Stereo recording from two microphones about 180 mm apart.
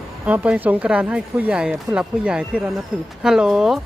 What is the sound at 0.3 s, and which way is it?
Speech, 10° right (ahead or behind).